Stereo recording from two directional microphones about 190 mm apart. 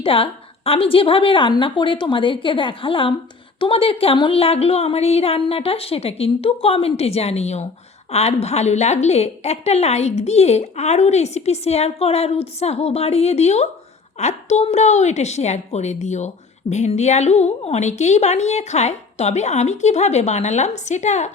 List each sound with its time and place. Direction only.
0.0 s a woman's voice: 30° left (ahead or behind)